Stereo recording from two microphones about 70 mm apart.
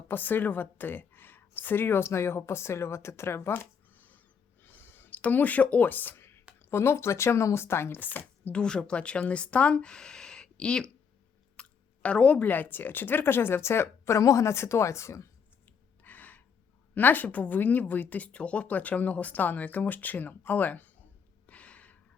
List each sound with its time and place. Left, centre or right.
0.1 s a woman's voice: left
4.6 s a sound: left
6.6 s speech: left
8.5 s speech: centre
11.6 s chewing: centre
12.0 s speech: centre; by 15.3 s left
16.0 s gasp: left
16.9 s speech: left
21.4 s a sound: centre